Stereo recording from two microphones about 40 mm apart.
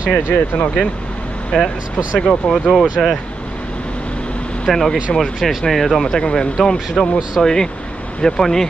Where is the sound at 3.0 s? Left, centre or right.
Centre.